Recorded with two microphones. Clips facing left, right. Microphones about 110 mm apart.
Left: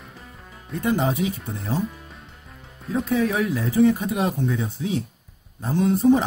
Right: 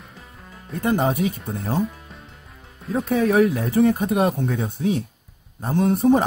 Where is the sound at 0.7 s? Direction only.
50° right (ahead or behind).